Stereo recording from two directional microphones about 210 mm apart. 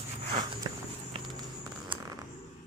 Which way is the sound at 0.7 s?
20° right (ahead or behind).